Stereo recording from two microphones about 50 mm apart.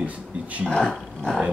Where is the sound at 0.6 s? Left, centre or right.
Centre.